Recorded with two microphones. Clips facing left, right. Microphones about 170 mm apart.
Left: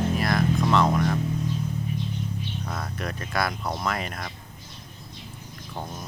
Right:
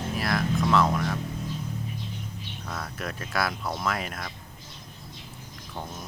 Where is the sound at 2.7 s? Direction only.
Centre (ahead or behind).